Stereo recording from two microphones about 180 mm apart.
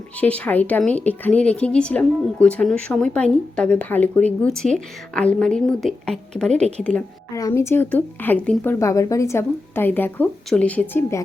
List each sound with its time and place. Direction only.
0.2 s a woman's voice: 10° left (ahead or behind)
6.5 s speech: 40° right (ahead or behind)
7.3 s speech: 15° left (ahead or behind)